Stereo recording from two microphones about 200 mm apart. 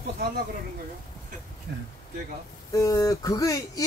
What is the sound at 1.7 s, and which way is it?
Speech, 55° right (ahead or behind).